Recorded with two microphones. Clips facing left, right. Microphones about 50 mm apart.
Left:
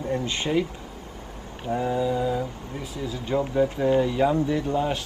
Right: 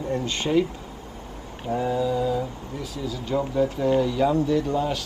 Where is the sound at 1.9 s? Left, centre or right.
Centre.